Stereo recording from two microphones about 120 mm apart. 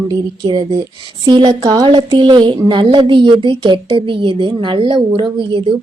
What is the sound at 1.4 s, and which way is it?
A woman's voice, 30° right (ahead or behind).